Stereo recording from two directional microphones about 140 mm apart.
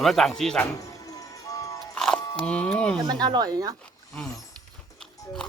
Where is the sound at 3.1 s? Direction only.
30° right (ahead or behind).